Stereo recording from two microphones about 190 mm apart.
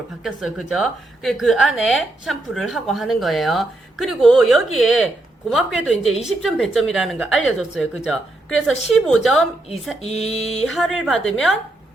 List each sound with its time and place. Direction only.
0.2 s a woman's voice: centre (ahead or behind)
10.0 s mantra: 35° left (ahead or behind)
10.7 s a woman's voice: centre (ahead or behind)